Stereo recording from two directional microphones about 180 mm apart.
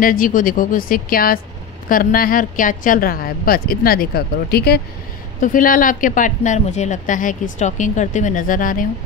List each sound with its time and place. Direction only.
0.0 s a woman's voice: 50° left (ahead or behind)
5.4 s speech: 50° left (ahead or behind)